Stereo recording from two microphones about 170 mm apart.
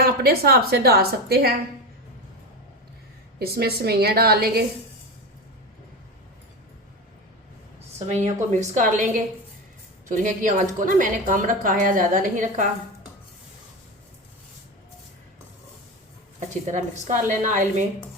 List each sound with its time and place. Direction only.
0.0 s a woman's voice: 65° right (ahead or behind)
3.3 s a woman's voice: 65° right (ahead or behind)
7.9 s a woman's voice: 40° right (ahead or behind)
16.6 s a woman's voice: 45° right (ahead or behind)